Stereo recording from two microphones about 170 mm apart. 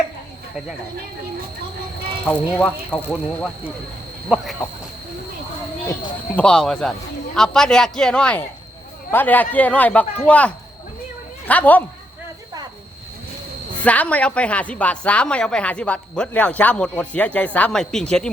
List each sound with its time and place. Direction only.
2.2 s a woman's voice: 5° left (ahead or behind)
4.3 s speech: 10° right (ahead or behind)
5.8 s a woman's voice: 15° left (ahead or behind)
6.4 s a woman's voice: 5° left (ahead or behind)
13.8 s a woman's voice: 10° left (ahead or behind)